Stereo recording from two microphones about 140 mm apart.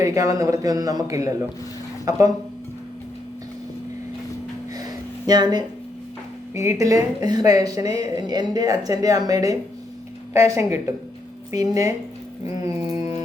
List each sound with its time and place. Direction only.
0.0 s speech: 25° right (ahead or behind)
4.9 s a sound: 30° right (ahead or behind)
6.5 s speech: 20° right (ahead or behind)